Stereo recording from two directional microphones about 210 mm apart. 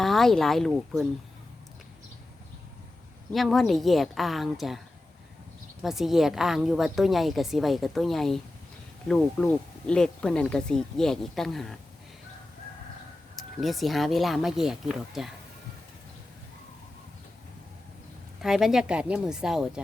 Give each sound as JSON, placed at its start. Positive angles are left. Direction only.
{"t": 0.0, "sound": "a woman's voice", "side_deg": 0}
{"t": 3.3, "sound": "a woman's voice", "side_deg": 0}
{"t": 5.8, "sound": "a woman's voice", "side_deg": 0}
{"t": 13.3, "sound": "a woman's voice", "side_deg": 0}
{"t": 18.4, "sound": "a woman's voice", "side_deg": 0}